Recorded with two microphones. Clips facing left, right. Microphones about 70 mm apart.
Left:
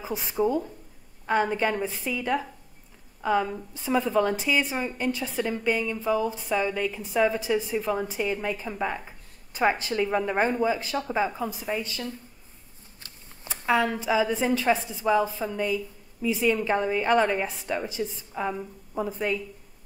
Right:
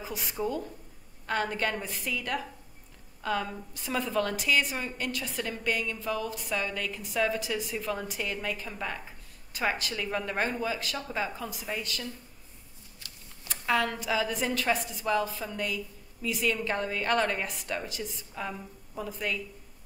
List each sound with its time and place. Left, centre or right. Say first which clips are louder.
0.0 s speech: left 5 dB; left
0.4 s a woman's voice: left 8 dB; centre
7.4 s a woman's voice: left 7 dB; left
7.7 s a woman's voice: left 6 dB; centre
13.0 s a sound: left 4 dB; left
13.7 s a woman's voice: left 4 dB; centre